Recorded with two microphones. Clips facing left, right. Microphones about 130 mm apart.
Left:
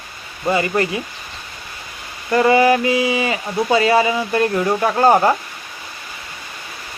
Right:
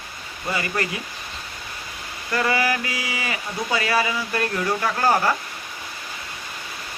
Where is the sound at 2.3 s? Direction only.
25° left (ahead or behind).